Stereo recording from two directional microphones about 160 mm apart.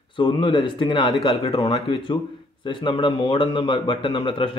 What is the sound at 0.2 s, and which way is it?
Speech, 30° left (ahead or behind).